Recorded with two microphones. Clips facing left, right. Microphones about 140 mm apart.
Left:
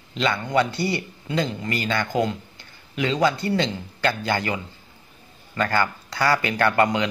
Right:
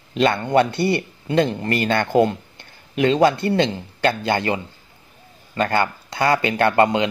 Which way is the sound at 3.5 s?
25° right (ahead or behind).